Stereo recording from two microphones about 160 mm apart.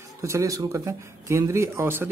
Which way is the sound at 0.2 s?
20° right (ahead or behind).